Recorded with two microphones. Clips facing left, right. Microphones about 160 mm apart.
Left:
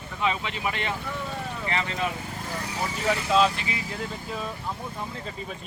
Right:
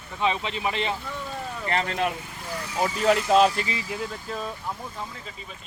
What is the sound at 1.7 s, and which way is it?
Speech, 45° right (ahead or behind).